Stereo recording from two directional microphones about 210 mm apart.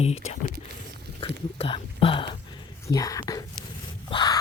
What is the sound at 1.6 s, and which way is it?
Speech, 25° left (ahead or behind).